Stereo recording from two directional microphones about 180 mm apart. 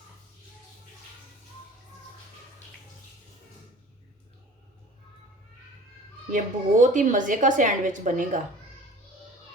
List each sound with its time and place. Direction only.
6.3 s a woman's voice: 45° right (ahead or behind)